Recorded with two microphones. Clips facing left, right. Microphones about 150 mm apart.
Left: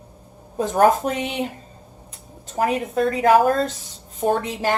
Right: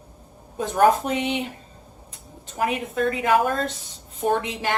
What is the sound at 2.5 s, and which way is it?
A woman's voice, 40° left (ahead or behind).